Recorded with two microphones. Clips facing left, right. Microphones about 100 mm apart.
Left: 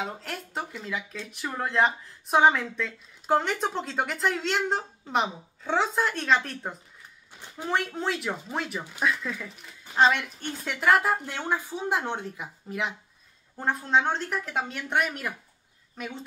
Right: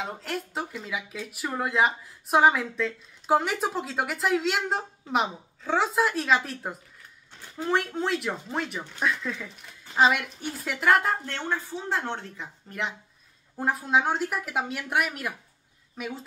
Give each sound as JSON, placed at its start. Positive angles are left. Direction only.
{"t": 0.0, "sound": "speech", "side_deg": 0}
{"t": 7.3, "sound": "a sound", "side_deg": 20}
{"t": 7.6, "sound": "speech", "side_deg": 0}